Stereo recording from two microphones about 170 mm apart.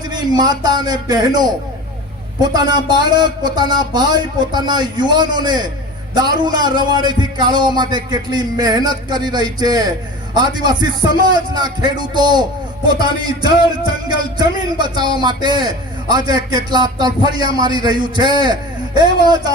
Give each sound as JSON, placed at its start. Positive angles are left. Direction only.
{"t": 0.1, "sound": "speech", "side_deg": -25}